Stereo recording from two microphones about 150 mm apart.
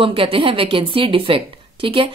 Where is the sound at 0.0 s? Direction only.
35° right (ahead or behind).